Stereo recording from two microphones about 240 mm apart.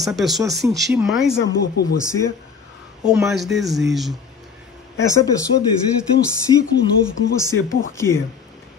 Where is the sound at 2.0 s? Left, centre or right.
Centre.